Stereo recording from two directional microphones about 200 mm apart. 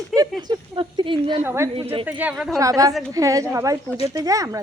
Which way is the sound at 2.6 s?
15° right (ahead or behind).